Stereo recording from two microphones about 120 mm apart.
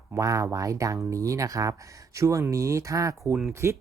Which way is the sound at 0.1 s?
25° right (ahead or behind).